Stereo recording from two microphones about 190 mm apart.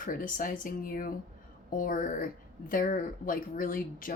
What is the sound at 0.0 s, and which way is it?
Speech, 45° left (ahead or behind).